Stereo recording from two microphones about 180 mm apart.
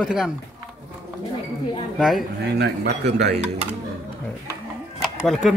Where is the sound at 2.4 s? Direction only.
65° right (ahead or behind).